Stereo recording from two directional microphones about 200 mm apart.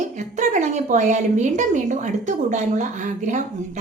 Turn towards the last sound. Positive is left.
turn(degrees=-35)  # may be behind; listen again after turning